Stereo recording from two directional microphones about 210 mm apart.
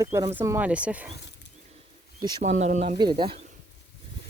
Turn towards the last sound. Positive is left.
turn(degrees=-25)  # may be behind; listen again after turning